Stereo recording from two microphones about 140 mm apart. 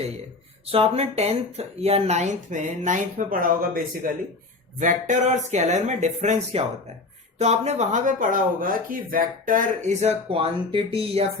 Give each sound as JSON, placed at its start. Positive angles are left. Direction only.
{"t": 0.7, "sound": "speech", "side_deg": -45}
{"t": 4.8, "sound": "speech", "side_deg": -60}
{"t": 10.2, "sound": "speech", "side_deg": -40}